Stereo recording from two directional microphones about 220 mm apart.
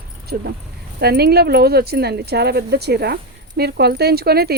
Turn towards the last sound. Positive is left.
turn(degrees=-45)  # may be behind; listen again after turning